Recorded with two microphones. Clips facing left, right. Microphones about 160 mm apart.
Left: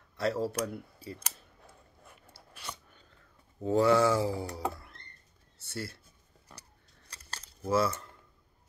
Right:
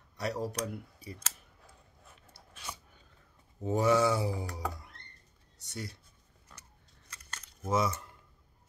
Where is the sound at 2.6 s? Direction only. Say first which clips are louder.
Left 1 dB; 10° right (ahead or behind).